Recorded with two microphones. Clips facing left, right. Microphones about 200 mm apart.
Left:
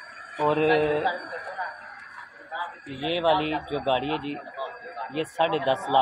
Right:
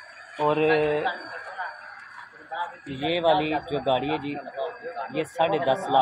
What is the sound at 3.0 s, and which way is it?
Speech, 10° right (ahead or behind).